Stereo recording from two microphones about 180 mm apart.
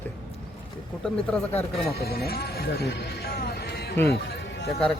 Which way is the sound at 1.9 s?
60° left (ahead or behind).